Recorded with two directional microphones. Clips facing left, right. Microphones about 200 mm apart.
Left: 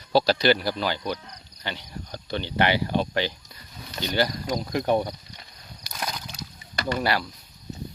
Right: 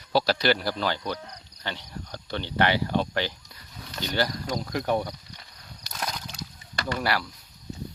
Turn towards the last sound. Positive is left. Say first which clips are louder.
# left 2 dB
turn(degrees=20)  # may be behind; listen again after turning